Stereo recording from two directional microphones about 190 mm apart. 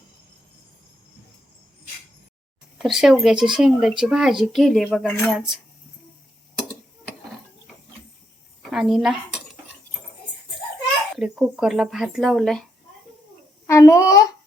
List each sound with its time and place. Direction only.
2.7 s speech: centre (ahead or behind)
8.7 s speech: centre (ahead or behind)
11.2 s speech: 5° right (ahead or behind)
13.7 s a child's voice: 15° left (ahead or behind)